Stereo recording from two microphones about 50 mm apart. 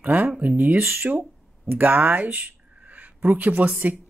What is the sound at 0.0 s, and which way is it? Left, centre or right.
A woman's voice, right.